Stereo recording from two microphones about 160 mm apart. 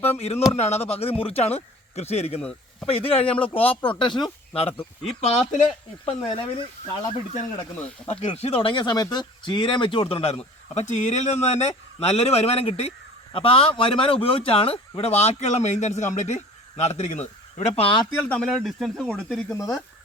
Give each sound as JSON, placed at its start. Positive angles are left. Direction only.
{"t": 0.2, "sound": "a man's voice", "side_deg": 40}
{"t": 18.2, "sound": "speech", "side_deg": 5}